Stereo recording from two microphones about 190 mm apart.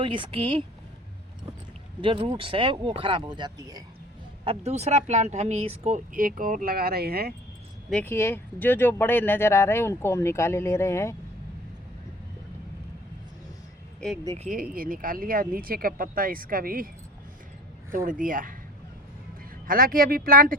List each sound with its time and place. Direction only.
0.0 s speech: 25° right (ahead or behind)
2.0 s speech: 25° right (ahead or behind)
4.4 s speech: 35° right (ahead or behind); by 7.3 s 55° right (ahead or behind)
7.9 s speech: 5° left (ahead or behind)
14.0 s speech: 5° left (ahead or behind)
14.3 s speech: 40° right (ahead or behind)
17.9 s speech: 45° right (ahead or behind)
19.6 s speech: 50° right (ahead or behind)